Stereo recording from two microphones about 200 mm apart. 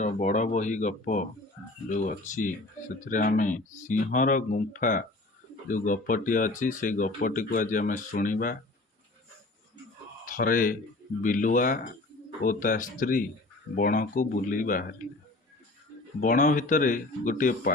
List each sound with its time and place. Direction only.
0.0 s speech: 40° left (ahead or behind)
10.2 s speech: 45° left (ahead or behind)
16.2 s speech: 40° left (ahead or behind)